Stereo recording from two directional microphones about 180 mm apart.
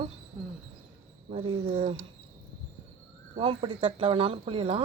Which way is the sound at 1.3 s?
30° right (ahead or behind).